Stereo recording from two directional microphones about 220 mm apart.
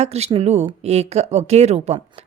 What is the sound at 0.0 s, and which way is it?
Speech, 30° right (ahead or behind).